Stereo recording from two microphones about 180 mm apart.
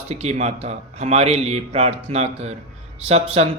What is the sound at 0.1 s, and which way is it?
Speech, 35° right (ahead or behind).